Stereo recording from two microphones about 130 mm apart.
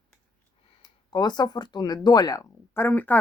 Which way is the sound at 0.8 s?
30° left (ahead or behind).